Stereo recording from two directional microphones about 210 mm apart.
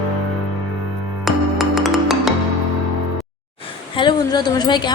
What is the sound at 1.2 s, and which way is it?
Music, centre (ahead or behind).